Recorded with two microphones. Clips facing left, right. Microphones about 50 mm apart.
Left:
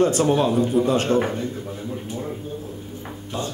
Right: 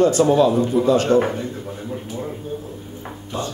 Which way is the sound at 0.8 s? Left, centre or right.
Left.